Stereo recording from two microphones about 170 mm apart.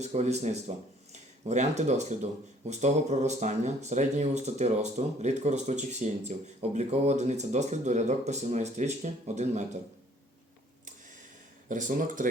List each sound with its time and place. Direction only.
0.0 s speech: 40° right (ahead or behind)
11.7 s speech: 50° right (ahead or behind)